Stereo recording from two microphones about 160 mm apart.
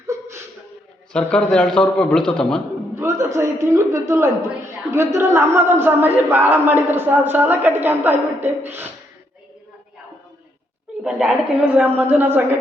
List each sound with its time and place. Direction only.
0.1 s a sound: 15° right (ahead or behind)
1.1 s a man's voice: 5° left (ahead or behind)
3.0 s a woman's voice: 15° right (ahead or behind)
11.0 s a woman's voice: 5° right (ahead or behind)